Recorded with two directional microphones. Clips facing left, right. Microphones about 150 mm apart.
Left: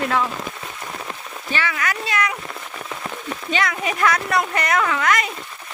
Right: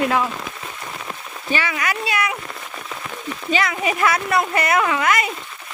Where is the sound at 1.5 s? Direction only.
15° right (ahead or behind).